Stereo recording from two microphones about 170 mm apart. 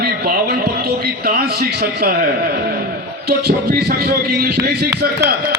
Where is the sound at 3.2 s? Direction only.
70° right (ahead or behind).